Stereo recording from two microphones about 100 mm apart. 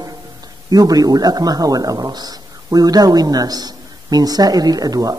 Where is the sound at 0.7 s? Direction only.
40° right (ahead or behind).